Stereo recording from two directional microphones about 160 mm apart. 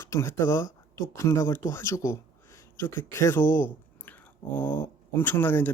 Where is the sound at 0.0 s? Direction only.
15° left (ahead or behind).